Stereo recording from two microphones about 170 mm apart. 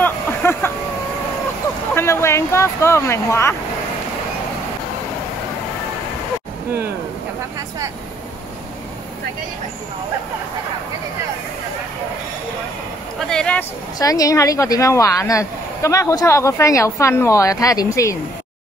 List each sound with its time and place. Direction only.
0.0 s vehicle: 10° left (ahead or behind)
2.0 s speech: 15° left (ahead or behind)
13.3 s speech: 5° left (ahead or behind)
13.9 s speech: 20° left (ahead or behind)